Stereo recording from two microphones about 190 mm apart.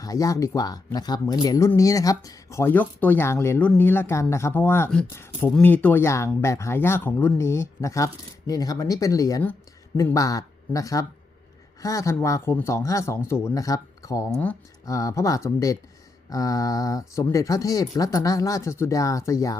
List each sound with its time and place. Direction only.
0.0 s speech: 20° left (ahead or behind)
14.3 s speech: 5° left (ahead or behind)
14.8 s speech: 15° left (ahead or behind)